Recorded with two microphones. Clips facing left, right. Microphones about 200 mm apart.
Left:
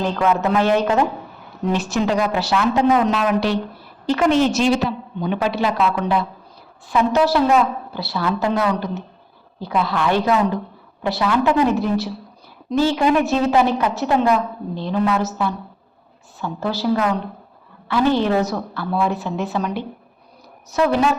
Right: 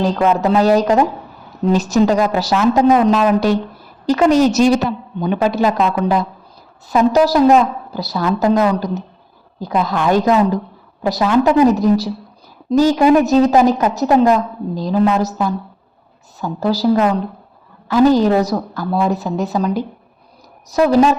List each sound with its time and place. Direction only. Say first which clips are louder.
0.0 s a woman's voice: right 4 dB; 35° right (ahead or behind)